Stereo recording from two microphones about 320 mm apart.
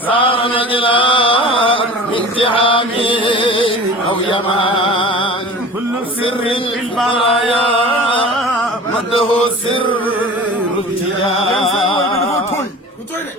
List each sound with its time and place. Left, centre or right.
0.1 s chant: centre
7.2 s chant: centre
7.5 s music: centre
11.3 s music: centre